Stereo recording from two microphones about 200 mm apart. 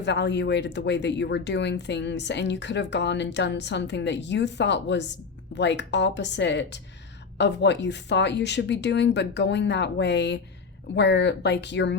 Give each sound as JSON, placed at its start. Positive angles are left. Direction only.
{"t": 0.0, "sound": "speech", "side_deg": 60}